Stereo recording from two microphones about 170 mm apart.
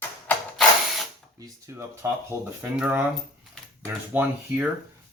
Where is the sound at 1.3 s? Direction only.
15° right (ahead or behind).